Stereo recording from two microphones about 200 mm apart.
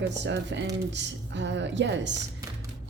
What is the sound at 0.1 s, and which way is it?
A woman's voice, 60° right (ahead or behind).